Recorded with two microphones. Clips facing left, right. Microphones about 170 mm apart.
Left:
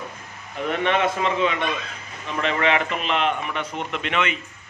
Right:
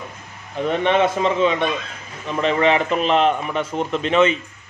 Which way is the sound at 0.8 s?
30° right (ahead or behind).